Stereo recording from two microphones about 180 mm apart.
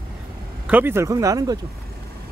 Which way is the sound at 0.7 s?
10° right (ahead or behind).